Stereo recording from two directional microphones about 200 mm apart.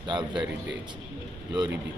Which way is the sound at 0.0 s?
25° right (ahead or behind).